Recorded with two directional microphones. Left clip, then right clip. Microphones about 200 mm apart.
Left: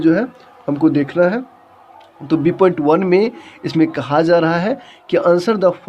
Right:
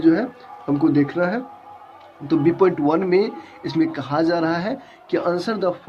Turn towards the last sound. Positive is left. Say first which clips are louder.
# left 8 dB
turn(degrees=55)  # may be behind; listen again after turning